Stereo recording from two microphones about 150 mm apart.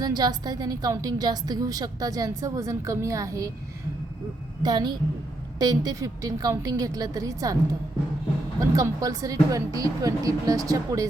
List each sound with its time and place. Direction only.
0.0 s a woman's voice: 25° right (ahead or behind)
4.6 s a woman's voice: 30° right (ahead or behind)
8.7 s a woman's voice: 25° right (ahead or behind)